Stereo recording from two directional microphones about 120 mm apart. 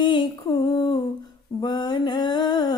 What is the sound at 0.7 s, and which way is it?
Humming, 40° left (ahead or behind).